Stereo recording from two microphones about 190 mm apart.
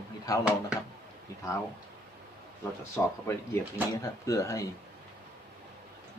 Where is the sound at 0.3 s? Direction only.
20° left (ahead or behind).